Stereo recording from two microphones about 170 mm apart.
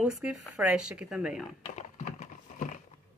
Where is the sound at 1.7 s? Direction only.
45° left (ahead or behind).